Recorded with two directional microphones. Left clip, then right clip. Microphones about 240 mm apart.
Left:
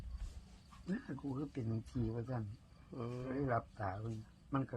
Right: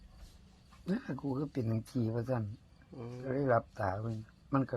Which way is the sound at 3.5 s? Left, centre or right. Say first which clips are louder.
Right 10 dB; right.